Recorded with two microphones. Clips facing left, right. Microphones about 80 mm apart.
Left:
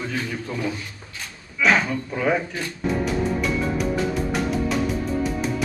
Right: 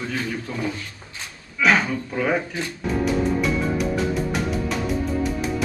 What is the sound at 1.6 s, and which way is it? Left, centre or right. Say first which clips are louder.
Speech: even; centre.